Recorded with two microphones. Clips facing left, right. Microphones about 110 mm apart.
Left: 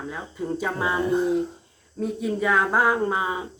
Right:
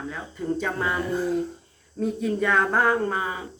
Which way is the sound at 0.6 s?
10° left (ahead or behind).